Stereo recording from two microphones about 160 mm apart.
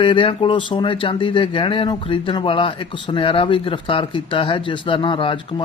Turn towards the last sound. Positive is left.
turn(degrees=35)  # may be behind; listen again after turning